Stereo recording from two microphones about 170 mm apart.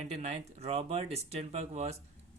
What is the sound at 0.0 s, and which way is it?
Speech, 40° right (ahead or behind).